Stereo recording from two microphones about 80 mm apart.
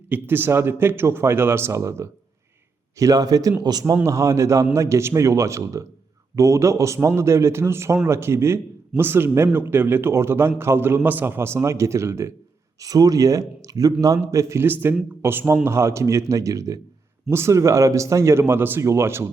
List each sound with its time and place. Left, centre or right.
0.1 s a man's voice: right
3.0 s a man's voice: right
4.0 s a man's voice: right
12.8 s a man's voice: right